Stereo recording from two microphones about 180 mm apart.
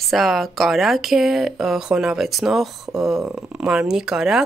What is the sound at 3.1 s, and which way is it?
Speech, 20° right (ahead or behind).